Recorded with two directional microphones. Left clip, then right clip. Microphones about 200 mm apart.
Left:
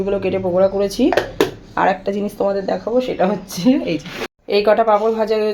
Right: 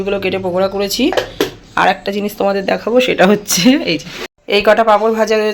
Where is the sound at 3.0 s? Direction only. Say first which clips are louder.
Right 10 dB; 30° right (ahead or behind).